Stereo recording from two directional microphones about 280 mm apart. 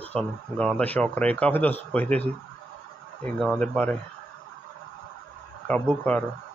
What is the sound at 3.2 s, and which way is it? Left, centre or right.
Speech, centre.